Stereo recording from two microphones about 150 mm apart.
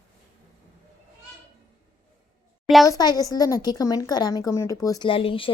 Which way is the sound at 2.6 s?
Centre (ahead or behind).